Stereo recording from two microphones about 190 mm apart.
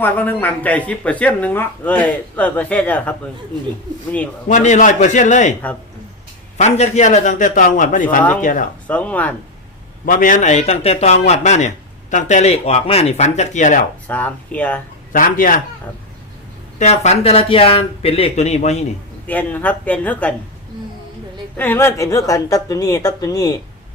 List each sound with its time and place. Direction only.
0.0 s speech: 10° left (ahead or behind)
4.4 s speech: 40° left (ahead or behind)
6.6 s a man's voice: 35° left (ahead or behind)
8.9 s speech: 5° left (ahead or behind)
10.1 s speech: 45° left (ahead or behind)
14.1 s speech: 10° left (ahead or behind)
15.1 s a man's voice: 45° left (ahead or behind)
16.7 s speech: 35° left (ahead or behind)
19.3 s speech: 10° left (ahead or behind)
21.6 s speech: 10° left (ahead or behind)